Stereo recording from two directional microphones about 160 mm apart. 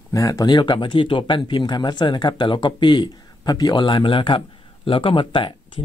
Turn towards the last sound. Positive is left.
turn(degrees=30)  # may be behind; listen again after turning